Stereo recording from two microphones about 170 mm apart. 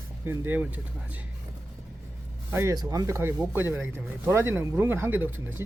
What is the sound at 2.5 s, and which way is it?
Speech, 15° right (ahead or behind).